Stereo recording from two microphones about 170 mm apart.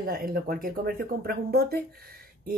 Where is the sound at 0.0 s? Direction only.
60° right (ahead or behind).